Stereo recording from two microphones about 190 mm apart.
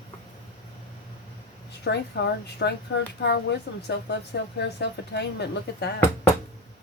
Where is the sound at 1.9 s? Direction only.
65° left (ahead or behind).